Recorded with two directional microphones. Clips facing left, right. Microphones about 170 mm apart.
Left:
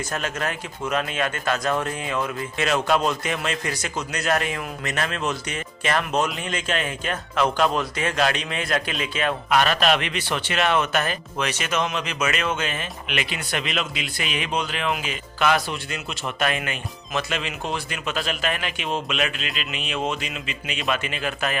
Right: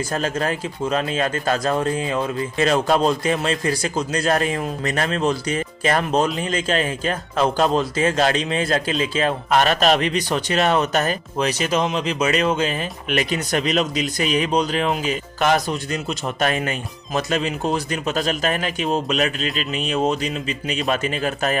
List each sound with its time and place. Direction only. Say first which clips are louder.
0.1 s a man's voice: right 5 dB; 30° right (ahead or behind)